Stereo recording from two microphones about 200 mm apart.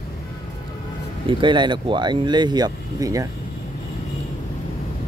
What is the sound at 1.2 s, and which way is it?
Speech, 25° right (ahead or behind).